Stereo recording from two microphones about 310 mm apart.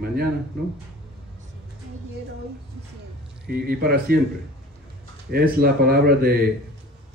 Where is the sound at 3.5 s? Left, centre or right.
Right.